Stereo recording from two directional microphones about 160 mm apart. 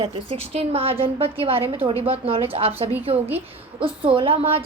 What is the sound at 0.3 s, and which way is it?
A woman's voice, 40° right (ahead or behind).